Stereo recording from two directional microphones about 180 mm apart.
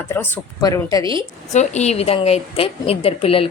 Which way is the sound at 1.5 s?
40° left (ahead or behind).